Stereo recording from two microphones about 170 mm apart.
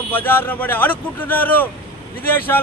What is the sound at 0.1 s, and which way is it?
A man's voice, 10° left (ahead or behind).